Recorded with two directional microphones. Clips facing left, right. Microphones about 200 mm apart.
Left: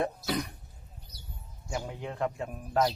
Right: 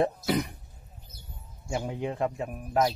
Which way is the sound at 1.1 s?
35° left (ahead or behind).